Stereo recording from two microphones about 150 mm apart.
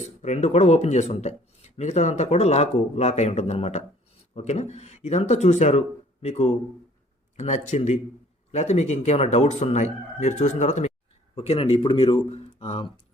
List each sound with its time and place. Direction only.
0.2 s speech: 50° left (ahead or behind)